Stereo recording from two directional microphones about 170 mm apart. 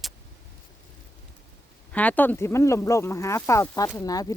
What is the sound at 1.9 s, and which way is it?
Speech, 10° left (ahead or behind).